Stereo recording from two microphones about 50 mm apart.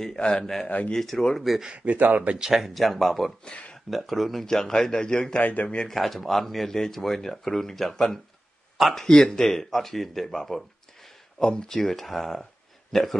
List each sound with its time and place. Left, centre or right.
0.2 s a man's voice: centre
0.7 s speech: left
0.9 s speech: centre
1.4 s speech: centre
1.7 s speech: right
2.3 s speech: centre
5.4 s speech: left
5.9 s speech: centre